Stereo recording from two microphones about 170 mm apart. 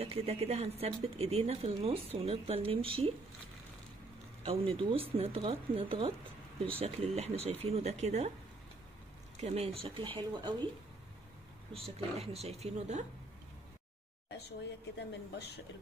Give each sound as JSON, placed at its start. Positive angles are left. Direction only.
{"t": 0.0, "sound": "speech", "side_deg": -35}
{"t": 4.5, "sound": "speech", "side_deg": -35}
{"t": 9.4, "sound": "speech", "side_deg": -40}
{"t": 11.7, "sound": "speech", "side_deg": -35}
{"t": 14.3, "sound": "a woman's voice", "side_deg": 85}